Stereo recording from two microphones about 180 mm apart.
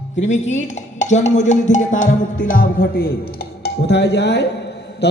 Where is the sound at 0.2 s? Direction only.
40° left (ahead or behind).